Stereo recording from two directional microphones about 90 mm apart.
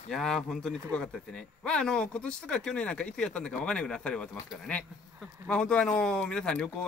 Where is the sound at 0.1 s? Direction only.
5° left (ahead or behind).